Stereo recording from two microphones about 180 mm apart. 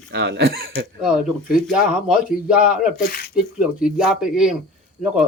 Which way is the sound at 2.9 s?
60° left (ahead or behind).